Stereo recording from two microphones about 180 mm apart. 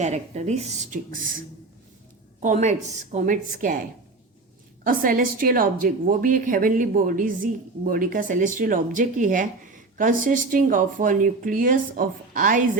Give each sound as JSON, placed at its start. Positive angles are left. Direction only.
{"t": 0.0, "sound": "a woman's voice", "side_deg": -40}
{"t": 2.4, "sound": "a woman's voice", "side_deg": -45}
{"t": 4.8, "sound": "a woman's voice", "side_deg": -50}